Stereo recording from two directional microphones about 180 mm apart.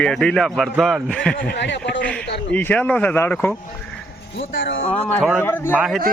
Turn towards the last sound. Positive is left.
turn(degrees=0)  # may be behind; listen again after turning